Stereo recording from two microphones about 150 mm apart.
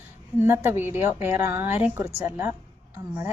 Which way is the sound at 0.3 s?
15° right (ahead or behind).